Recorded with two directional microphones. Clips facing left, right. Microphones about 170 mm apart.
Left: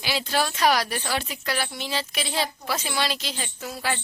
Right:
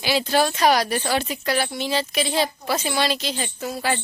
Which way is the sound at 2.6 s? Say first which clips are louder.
Right 5 dB; 45° right (ahead or behind).